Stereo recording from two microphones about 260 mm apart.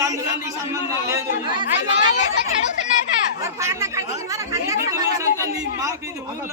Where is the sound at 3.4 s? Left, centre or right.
Centre.